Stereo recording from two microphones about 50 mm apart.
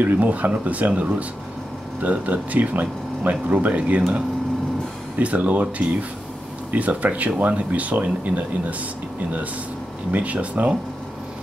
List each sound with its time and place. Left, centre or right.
0.0 s speech: right
5.2 s speech: right
10.1 s speech: right